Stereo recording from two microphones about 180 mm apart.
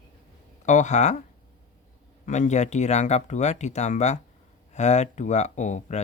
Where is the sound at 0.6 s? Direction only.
40° left (ahead or behind).